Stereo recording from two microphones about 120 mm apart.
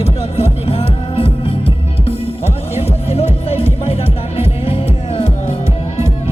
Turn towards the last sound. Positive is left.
turn(degrees=55)  # may be behind; listen again after turning